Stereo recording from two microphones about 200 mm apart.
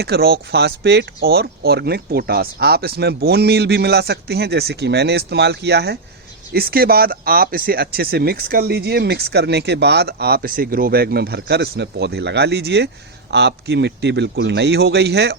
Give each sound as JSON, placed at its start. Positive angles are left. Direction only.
{"t": 0.0, "sound": "a man's voice", "side_deg": -50}